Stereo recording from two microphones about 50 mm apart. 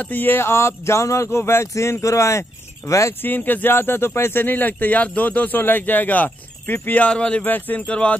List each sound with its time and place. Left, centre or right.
0.1 s speech: left
2.9 s speech: left
3.3 s speech: left
7.1 s speech: left
7.4 s speech: left
7.9 s speech: left